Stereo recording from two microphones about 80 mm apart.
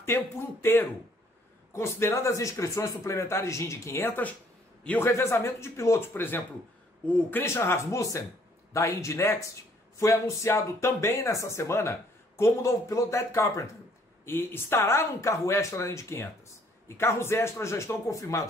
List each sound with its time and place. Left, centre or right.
0.0 s speech: left
4.8 s speech: left
7.4 s speech: left
14.2 s speech: left